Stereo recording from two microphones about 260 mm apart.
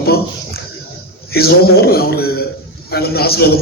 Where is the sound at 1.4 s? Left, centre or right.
Left.